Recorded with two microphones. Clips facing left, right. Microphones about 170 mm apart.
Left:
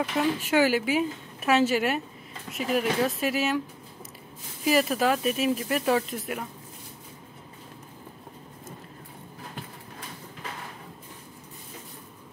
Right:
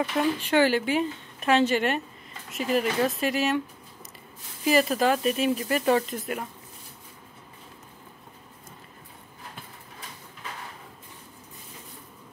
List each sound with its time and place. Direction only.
0.2 s a woman's voice: 5° left (ahead or behind)
4.6 s a woman's voice: centre (ahead or behind)